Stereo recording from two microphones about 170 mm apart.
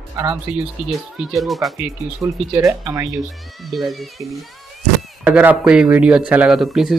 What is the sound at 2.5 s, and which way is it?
Speech, 20° right (ahead or behind).